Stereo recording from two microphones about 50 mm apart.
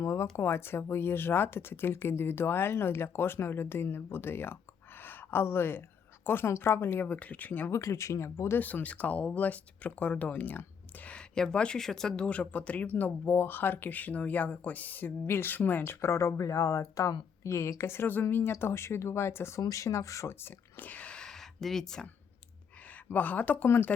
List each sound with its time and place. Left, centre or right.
0.0 s speech: left
0.3 s a woman's voice: left
7.0 s speech: left
7.7 s speech: left
8.5 s speech: left
11.3 s speech: centre; by 16.3 s left
16.4 s speech: left
17.8 s speech: left
18.6 s speech: left
20.4 s speech: left
21.2 s a sound: centre
23.0 s speech: left
23.6 s speech: left